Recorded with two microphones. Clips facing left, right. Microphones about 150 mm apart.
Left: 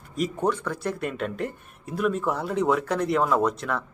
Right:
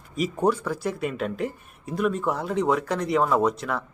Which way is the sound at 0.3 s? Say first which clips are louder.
Right 5 dB; 10° right (ahead or behind).